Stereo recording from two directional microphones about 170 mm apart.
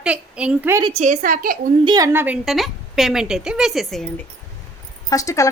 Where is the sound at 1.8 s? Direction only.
20° right (ahead or behind).